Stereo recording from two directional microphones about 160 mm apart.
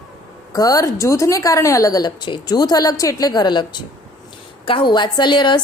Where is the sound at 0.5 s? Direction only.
20° left (ahead or behind).